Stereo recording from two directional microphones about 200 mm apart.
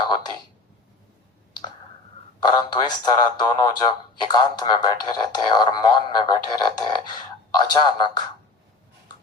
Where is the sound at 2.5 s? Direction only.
20° left (ahead or behind).